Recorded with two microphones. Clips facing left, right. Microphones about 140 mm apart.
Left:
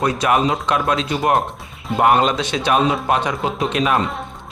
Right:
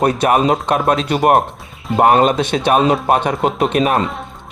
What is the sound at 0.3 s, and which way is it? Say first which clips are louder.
Speech: right 1 dB; 45° right (ahead or behind).